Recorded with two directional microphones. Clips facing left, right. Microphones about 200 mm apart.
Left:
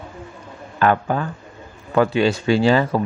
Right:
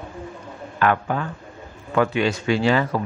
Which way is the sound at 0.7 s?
35° left (ahead or behind).